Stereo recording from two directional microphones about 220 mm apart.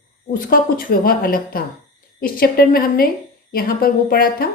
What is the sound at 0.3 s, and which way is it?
A woman's voice, 40° left (ahead or behind).